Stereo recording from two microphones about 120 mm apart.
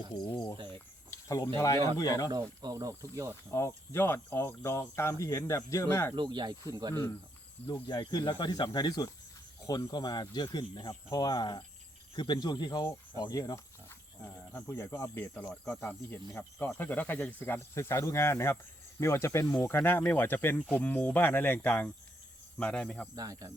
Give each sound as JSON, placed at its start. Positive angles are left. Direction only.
{"t": 0.1, "sound": "speech", "side_deg": 40}
{"t": 1.1, "sound": "cricket", "side_deg": 30}
{"t": 1.5, "sound": "speech", "side_deg": 25}
{"t": 2.3, "sound": "speech", "side_deg": -35}
{"t": 3.5, "sound": "speech", "side_deg": 20}
{"t": 6.1, "sound": "speech", "side_deg": -40}
{"t": 7.7, "sound": "speech", "side_deg": 35}
{"t": 23.1, "sound": "speech", "side_deg": -30}